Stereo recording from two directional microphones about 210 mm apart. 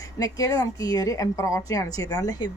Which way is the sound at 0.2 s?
15° left (ahead or behind).